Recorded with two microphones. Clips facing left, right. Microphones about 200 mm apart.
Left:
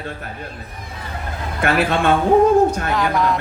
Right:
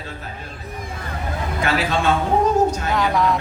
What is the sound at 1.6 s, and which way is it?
Speech, 55° left (ahead or behind).